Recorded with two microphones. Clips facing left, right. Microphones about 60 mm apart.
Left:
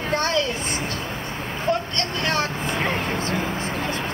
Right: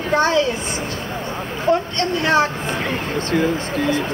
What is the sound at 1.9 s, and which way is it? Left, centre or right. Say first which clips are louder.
Speech: right 7 dB; centre.